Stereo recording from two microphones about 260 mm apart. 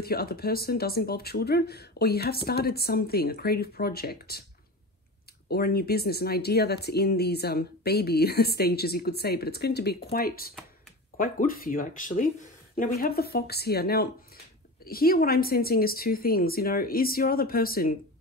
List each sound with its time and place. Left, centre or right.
0.0 s speech: left
5.5 s speech: left